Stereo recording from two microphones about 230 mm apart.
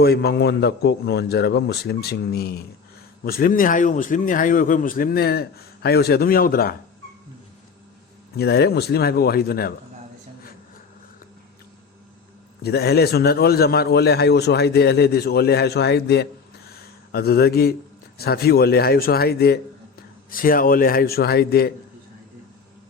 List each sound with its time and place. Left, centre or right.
0.0 s a man's voice: left
8.4 s a man's voice: left
12.6 s a man's voice: left
16.7 s a sound: left
18.2 s a man's voice: left